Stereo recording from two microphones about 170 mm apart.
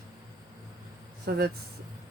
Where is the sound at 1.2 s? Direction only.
65° right (ahead or behind).